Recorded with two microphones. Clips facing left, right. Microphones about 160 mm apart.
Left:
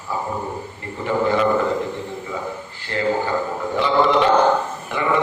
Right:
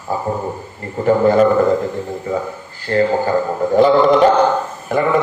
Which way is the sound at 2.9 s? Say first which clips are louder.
Right 6 dB; 45° right (ahead or behind).